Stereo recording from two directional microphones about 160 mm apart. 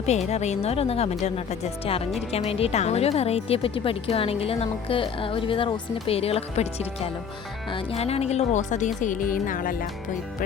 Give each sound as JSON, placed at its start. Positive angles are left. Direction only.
{"t": 0.0, "sound": "speech", "side_deg": 40}